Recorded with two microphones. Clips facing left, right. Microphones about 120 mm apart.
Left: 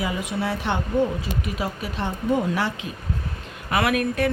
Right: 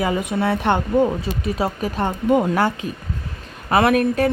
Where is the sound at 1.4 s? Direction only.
35° right (ahead or behind).